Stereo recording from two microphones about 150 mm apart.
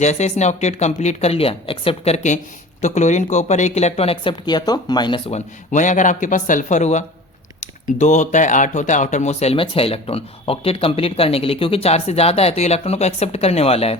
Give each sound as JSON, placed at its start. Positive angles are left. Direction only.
{"t": 0.0, "sound": "speech", "side_deg": 50}
{"t": 5.3, "sound": "speech", "side_deg": 55}